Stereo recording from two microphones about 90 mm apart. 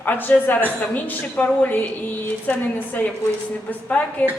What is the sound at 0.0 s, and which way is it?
A woman's voice, 20° left (ahead or behind).